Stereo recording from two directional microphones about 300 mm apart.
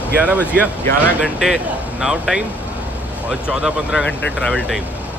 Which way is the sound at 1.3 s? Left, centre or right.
Centre.